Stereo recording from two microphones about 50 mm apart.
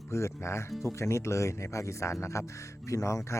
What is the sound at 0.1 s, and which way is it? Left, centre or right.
Speech, left.